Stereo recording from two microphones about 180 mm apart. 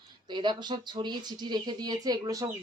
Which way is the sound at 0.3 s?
25° right (ahead or behind).